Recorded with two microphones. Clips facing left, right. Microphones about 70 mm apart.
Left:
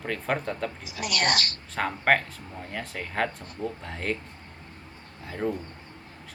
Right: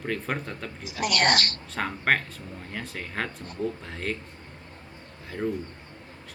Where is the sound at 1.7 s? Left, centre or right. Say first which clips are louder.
Left 2 dB; centre.